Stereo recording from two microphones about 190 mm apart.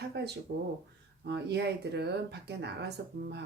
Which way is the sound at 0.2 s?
60° right (ahead or behind).